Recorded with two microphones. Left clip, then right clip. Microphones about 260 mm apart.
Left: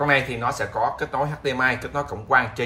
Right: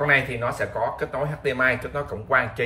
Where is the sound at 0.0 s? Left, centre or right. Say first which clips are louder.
Even; centre.